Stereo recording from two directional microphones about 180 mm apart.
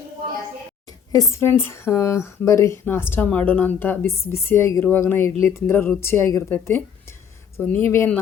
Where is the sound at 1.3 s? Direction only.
15° left (ahead or behind).